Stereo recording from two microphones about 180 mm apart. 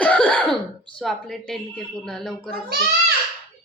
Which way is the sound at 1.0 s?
Centre (ahead or behind).